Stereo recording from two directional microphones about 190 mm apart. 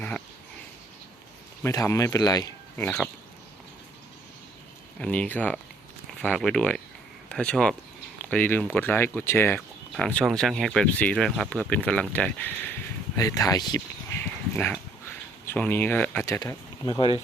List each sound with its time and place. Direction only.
1.6 s speech: 15° left (ahead or behind)
4.9 s speech: 5° left (ahead or behind); by 17.1 s 20° left (ahead or behind)